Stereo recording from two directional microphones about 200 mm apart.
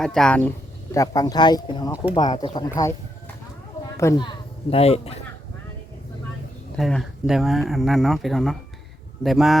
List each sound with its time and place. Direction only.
0.0 s speech: 5° left (ahead or behind)
0.9 s speech: 15° left (ahead or behind)
3.9 s a man's voice: 15° left (ahead or behind)
6.7 s speech: centre (ahead or behind)